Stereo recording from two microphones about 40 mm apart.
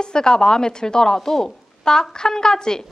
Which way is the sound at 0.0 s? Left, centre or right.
Centre.